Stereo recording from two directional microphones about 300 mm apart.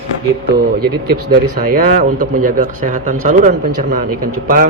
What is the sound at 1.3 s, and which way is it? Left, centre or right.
Speech, right.